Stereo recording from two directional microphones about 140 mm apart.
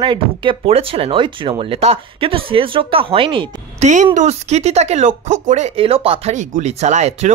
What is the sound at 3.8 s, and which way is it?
Speech, 60° right (ahead or behind).